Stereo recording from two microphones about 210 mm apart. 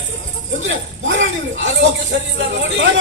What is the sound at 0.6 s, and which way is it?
Speech, 65° right (ahead or behind).